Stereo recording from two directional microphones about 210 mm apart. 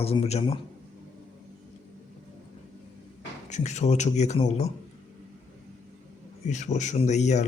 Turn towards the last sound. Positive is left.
turn(degrees=35)  # may be behind; listen again after turning